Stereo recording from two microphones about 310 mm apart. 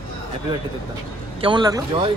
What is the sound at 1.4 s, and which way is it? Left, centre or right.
Speech, centre.